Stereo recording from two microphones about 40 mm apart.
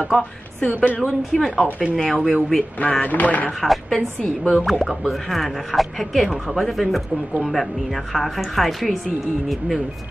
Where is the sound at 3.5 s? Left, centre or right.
Centre.